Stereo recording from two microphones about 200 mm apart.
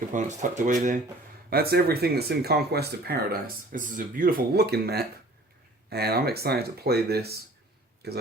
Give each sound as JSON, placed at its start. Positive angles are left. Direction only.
{"t": 0.1, "sound": "speech", "side_deg": -40}
{"t": 1.5, "sound": "speech", "side_deg": -50}